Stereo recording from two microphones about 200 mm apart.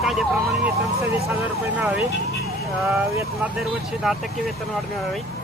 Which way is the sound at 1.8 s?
5° right (ahead or behind).